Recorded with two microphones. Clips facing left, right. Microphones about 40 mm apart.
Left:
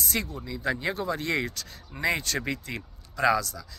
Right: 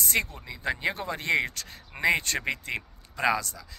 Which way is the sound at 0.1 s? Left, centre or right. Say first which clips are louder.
Right 4 dB; right.